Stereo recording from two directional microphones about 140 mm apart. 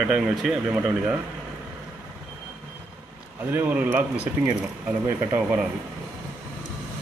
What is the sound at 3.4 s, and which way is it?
Speech, 15° right (ahead or behind).